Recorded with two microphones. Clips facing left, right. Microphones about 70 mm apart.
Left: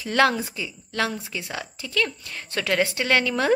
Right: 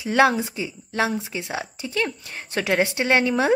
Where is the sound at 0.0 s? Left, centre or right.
Centre.